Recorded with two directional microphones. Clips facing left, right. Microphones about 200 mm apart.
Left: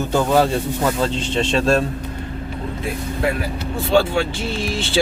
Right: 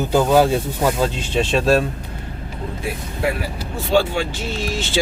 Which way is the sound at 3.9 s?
Centre (ahead or behind).